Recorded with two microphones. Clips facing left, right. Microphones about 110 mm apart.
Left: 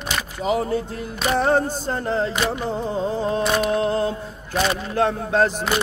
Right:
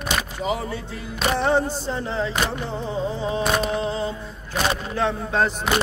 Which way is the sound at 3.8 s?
55° left (ahead or behind).